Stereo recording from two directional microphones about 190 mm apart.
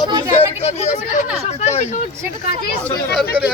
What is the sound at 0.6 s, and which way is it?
Speech, 35° left (ahead or behind).